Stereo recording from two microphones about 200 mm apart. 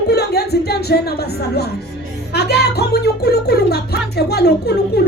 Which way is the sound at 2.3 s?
55° left (ahead or behind).